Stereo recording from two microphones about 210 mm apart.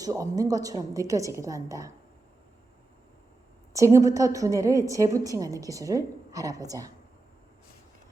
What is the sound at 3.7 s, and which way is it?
A woman's voice, 15° right (ahead or behind).